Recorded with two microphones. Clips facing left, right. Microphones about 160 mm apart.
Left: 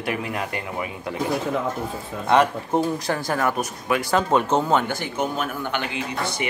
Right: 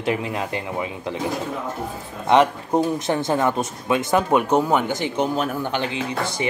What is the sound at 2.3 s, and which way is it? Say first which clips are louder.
Speech: right 2 dB; 20° right (ahead or behind).